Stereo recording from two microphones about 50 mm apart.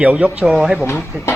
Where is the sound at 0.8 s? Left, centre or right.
Left.